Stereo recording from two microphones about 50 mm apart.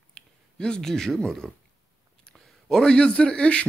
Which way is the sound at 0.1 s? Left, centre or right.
Centre.